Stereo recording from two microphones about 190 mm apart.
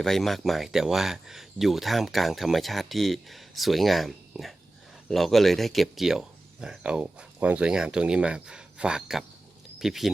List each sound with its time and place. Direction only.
0.0 s speech: centre (ahead or behind)